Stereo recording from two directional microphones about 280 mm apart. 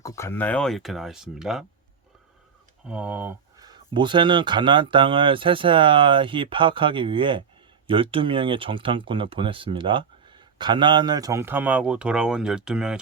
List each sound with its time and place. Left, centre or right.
0.0 s speech: centre
2.8 s speech: centre